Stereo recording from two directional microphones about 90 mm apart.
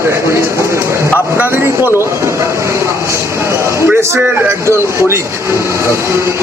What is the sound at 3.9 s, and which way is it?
Speech, 30° right (ahead or behind).